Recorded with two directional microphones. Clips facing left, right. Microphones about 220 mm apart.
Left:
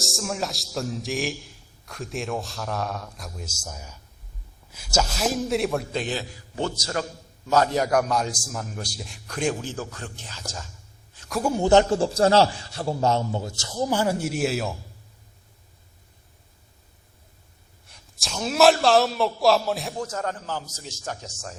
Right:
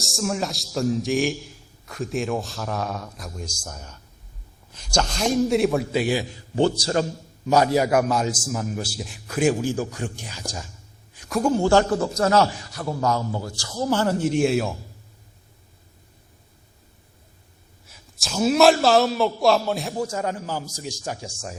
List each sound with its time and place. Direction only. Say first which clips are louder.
0.0 s a man's voice: right 3 dB; centre (ahead or behind)
6.3 s a man's voice: right 8 dB; 30° right (ahead or behind)
7.4 s a man's voice: right 3 dB; 15° right (ahead or behind)
11.3 s a man's voice: right 4 dB; centre (ahead or behind)
11.5 s a man's voice: left 2 dB; 20° left (ahead or behind); by 14.8 s centre (ahead or behind)
17.8 s a man's voice: right 1 dB; centre (ahead or behind)
20.1 s a man's voice: right 3 dB; 10° right (ahead or behind)